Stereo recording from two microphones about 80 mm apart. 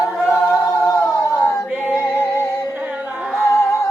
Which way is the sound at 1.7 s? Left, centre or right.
Centre.